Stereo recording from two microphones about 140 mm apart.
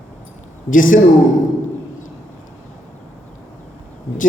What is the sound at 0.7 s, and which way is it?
Speech, 75° left (ahead or behind).